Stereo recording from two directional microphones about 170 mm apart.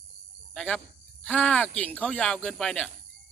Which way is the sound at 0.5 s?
5° left (ahead or behind).